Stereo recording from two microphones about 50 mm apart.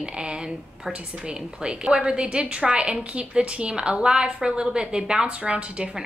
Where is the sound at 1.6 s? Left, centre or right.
Centre.